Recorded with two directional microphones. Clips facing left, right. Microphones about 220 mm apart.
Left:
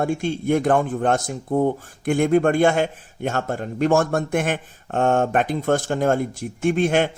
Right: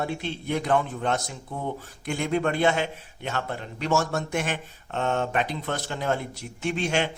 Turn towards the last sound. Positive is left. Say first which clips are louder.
# left 7 dB
turn(degrees=50)  # may be behind; listen again after turning